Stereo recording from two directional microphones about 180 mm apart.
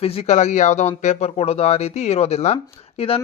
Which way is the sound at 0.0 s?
35° left (ahead or behind).